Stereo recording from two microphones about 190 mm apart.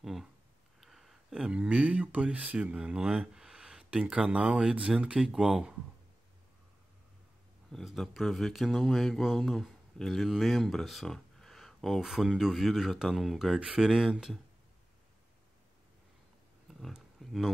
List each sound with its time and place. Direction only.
0.0 s a sound: centre (ahead or behind)
0.7 s speech: centre (ahead or behind)
7.7 s speech: centre (ahead or behind)
16.8 s roaring cats: centre (ahead or behind)